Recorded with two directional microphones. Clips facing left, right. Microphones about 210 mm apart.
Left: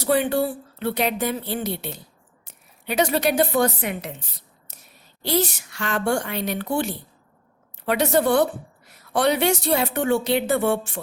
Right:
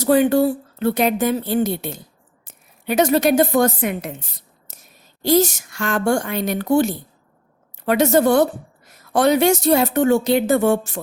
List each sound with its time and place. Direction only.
0.0 s a woman's voice: 45° right (ahead or behind)
5.2 s a woman's voice: 45° right (ahead or behind)